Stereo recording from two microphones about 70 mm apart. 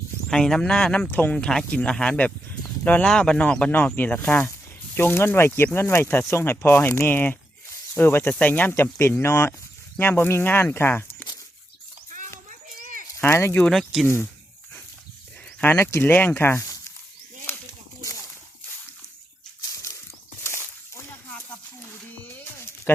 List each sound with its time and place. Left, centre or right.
0.3 s speech: centre; by 5.5 s left
5.5 s speech: left
13.1 s speech: left
13.7 s speech: centre
15.6 s speech: left
19.7 s a sound: left
20.4 s a sound: left